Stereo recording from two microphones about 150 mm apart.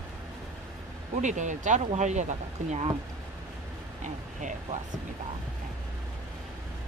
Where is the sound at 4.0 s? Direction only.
55° right (ahead or behind).